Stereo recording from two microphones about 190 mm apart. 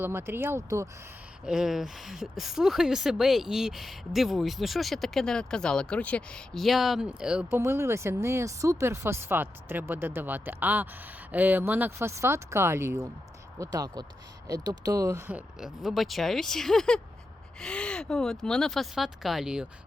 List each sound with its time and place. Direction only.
0.0 s speech: 15° right (ahead or behind)
1.5 s speech: 5° right (ahead or behind)